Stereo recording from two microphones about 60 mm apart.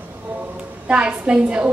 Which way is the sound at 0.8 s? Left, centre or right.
Centre.